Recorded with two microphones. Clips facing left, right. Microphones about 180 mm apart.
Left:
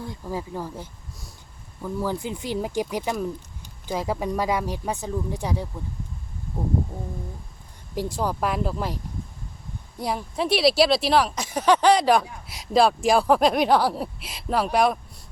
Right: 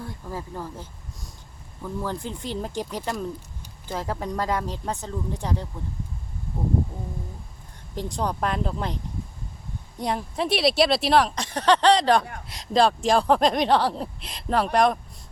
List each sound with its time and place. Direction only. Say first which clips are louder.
0.3 s speech: left 4 dB; 15° left (ahead or behind)
7.9 s speech: left 2 dB; 5° left (ahead or behind)
10.0 s speech: even; centre (ahead or behind)